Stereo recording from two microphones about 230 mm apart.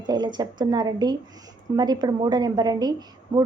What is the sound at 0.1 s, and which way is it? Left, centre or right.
A woman's voice, centre.